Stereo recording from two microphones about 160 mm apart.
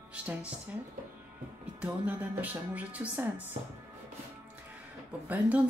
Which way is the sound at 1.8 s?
10° right (ahead or behind).